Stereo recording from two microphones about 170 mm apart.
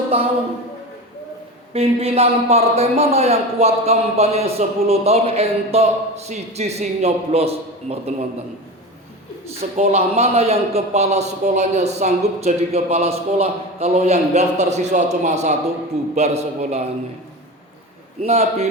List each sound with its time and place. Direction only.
0.1 s a man's voice: 35° right (ahead or behind)
1.7 s a man's voice: 35° right (ahead or behind)
9.6 s a man's voice: 40° right (ahead or behind)
18.2 s a man's voice: 40° right (ahead or behind)